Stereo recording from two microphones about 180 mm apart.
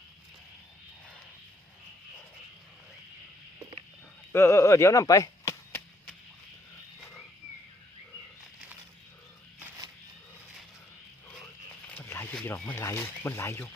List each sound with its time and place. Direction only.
4.3 s speech: 15° left (ahead or behind)
11.9 s speech: 10° left (ahead or behind)